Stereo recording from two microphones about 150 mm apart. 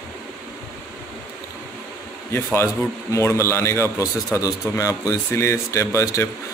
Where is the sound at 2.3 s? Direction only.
15° left (ahead or behind).